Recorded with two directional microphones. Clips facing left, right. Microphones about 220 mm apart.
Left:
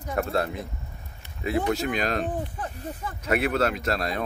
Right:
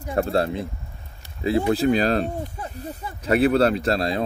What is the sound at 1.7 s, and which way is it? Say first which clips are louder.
Speech: right 7 dB; 35° right (ahead or behind).